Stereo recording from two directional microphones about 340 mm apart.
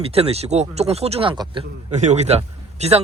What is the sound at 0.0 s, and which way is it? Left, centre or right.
Speech, centre.